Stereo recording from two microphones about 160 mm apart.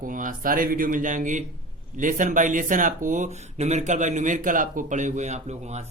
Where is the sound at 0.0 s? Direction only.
60° right (ahead or behind).